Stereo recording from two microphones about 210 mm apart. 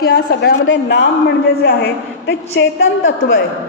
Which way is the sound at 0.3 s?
50° left (ahead or behind).